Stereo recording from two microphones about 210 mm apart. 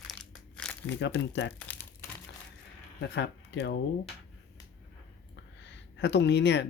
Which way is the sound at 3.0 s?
55° left (ahead or behind).